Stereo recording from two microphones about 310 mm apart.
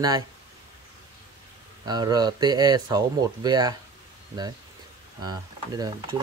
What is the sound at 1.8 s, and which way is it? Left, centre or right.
Speech, centre.